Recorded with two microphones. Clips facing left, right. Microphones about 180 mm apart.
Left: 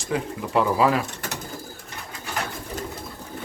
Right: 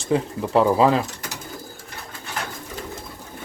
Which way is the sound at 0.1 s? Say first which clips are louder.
Right 4 dB; 30° right (ahead or behind).